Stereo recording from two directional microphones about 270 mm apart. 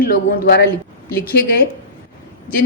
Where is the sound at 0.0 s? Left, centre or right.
Left.